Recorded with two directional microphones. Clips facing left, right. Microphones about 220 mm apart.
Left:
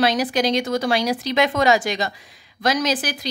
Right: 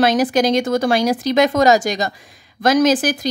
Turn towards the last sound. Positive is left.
turn(degrees=-45)  # may be behind; listen again after turning